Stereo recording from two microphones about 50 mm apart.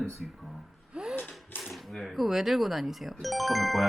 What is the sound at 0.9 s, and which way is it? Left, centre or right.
Gasp, centre.